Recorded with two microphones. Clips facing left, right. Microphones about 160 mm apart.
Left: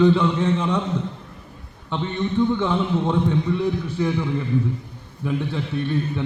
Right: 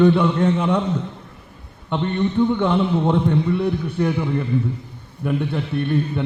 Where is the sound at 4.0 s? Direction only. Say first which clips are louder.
Right 2 dB; 5° right (ahead or behind).